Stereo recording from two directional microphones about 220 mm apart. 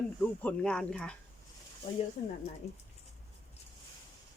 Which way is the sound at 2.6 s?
30° left (ahead or behind).